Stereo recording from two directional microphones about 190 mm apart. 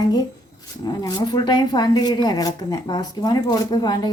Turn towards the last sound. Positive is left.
turn(degrees=20)  # may be behind; listen again after turning